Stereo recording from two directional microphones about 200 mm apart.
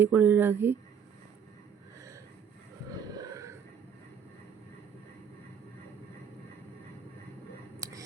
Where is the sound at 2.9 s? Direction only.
20° right (ahead or behind).